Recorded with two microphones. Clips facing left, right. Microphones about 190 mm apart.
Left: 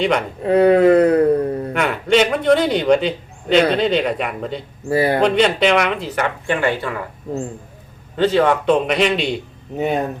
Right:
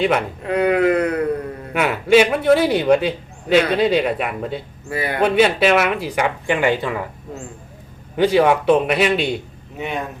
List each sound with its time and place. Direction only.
0.4 s speech: 35° left (ahead or behind)
1.7 s a man's voice: 5° right (ahead or behind)
4.9 s speech: 35° left (ahead or behind)
5.2 s a man's voice: 5° right (ahead or behind)
8.1 s a man's voice: 10° right (ahead or behind)
9.7 s speech: 40° left (ahead or behind)